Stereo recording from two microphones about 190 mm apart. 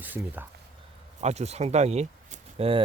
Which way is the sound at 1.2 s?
35° right (ahead or behind).